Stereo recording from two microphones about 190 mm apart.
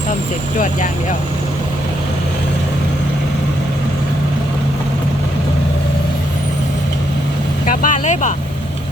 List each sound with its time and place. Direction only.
7.7 s speech: 45° left (ahead or behind)